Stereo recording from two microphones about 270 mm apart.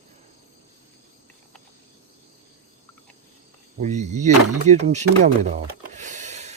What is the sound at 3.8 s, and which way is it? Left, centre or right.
Speech, right.